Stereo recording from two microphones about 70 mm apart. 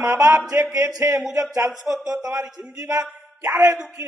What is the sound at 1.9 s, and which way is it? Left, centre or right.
Speech, right.